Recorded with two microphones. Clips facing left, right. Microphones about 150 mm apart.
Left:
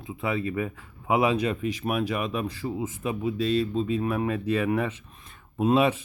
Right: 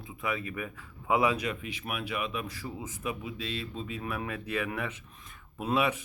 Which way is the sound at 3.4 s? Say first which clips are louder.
Left 12 dB; 40° left (ahead or behind).